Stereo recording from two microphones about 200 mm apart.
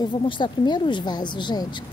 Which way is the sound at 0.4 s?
20° left (ahead or behind).